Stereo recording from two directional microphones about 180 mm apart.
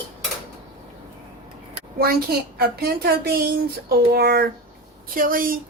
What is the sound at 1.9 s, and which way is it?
A woman's voice, 55° right (ahead or behind).